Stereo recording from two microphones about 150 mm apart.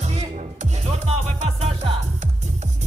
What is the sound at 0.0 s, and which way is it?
Music, 50° right (ahead or behind).